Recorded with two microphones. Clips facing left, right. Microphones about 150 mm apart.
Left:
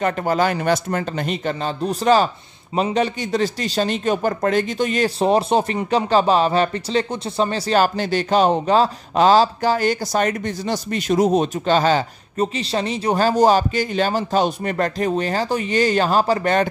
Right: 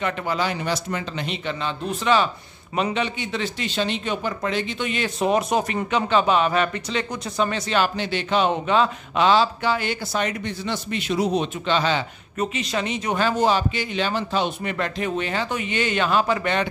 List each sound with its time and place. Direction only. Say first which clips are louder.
0.0 s a man's voice: left 6 dB; 45° left (ahead or behind)